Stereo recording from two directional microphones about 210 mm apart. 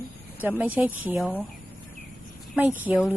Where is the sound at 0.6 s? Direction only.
5° right (ahead or behind).